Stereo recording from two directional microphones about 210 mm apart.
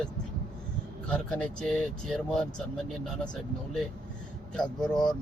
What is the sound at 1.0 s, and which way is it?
Speech, 5° left (ahead or behind).